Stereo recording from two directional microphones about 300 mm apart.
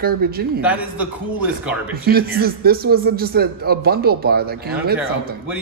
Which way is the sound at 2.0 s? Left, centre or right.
Right.